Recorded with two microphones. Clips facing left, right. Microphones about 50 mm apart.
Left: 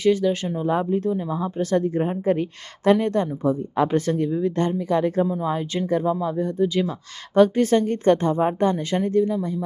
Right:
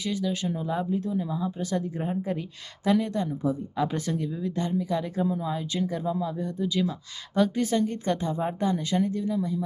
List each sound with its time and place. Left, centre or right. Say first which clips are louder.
0.0 s a woman's voice: left 9 dB; left